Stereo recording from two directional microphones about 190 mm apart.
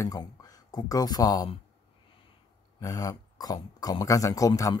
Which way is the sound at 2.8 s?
20° left (ahead or behind).